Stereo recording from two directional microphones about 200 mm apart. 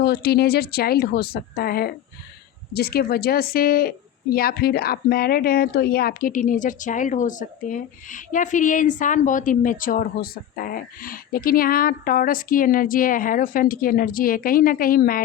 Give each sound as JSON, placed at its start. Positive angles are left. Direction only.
{"t": 0.0, "sound": "speech", "side_deg": 50}